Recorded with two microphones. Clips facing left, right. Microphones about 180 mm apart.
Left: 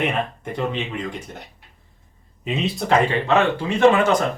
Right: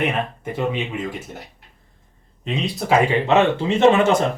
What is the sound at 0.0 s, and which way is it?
Speech, centre (ahead or behind).